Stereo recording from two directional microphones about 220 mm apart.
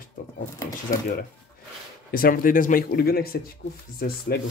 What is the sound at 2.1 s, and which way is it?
Speech, 40° left (ahead or behind).